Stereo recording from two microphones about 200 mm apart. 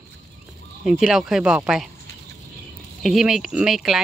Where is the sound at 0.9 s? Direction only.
Centre (ahead or behind).